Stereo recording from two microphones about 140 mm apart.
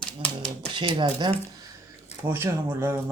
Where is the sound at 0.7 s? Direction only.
35° right (ahead or behind).